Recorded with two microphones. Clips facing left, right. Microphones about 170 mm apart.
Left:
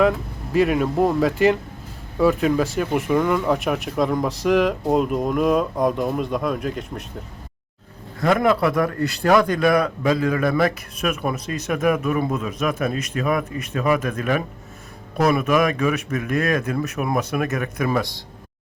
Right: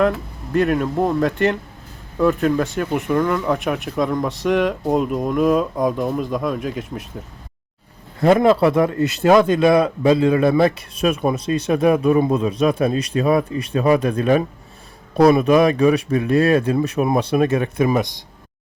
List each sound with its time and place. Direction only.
0.5 s speech: 5° left (ahead or behind)
8.2 s a man's voice: 25° right (ahead or behind)